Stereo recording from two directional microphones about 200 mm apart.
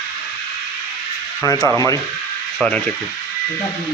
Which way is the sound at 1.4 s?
15° left (ahead or behind).